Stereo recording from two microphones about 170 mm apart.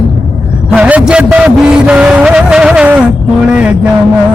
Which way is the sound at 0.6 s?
5° right (ahead or behind).